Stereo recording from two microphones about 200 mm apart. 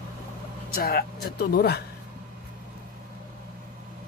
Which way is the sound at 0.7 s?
50° left (ahead or behind).